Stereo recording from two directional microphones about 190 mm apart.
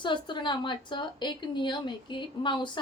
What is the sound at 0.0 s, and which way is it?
A woman's voice, 25° left (ahead or behind).